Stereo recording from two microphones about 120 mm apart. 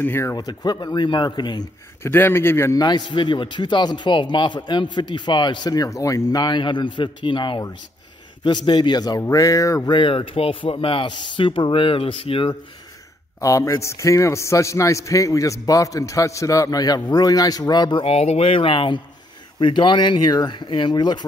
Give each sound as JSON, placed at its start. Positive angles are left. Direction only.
{"t": 0.0, "sound": "a man's voice", "side_deg": 20}
{"t": 2.0, "sound": "a man's voice", "side_deg": 20}
{"t": 2.8, "sound": "a man's voice", "side_deg": 40}
{"t": 9.9, "sound": "speech", "side_deg": 45}
{"t": 13.4, "sound": "a man's voice", "side_deg": 25}
{"t": 18.0, "sound": "a man's voice", "side_deg": 60}